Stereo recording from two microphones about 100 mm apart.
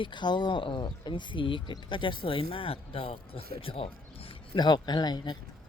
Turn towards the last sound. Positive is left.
turn(degrees=45)  # may be behind; listen again after turning